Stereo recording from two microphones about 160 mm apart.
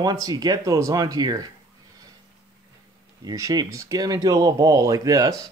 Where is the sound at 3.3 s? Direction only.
20° right (ahead or behind).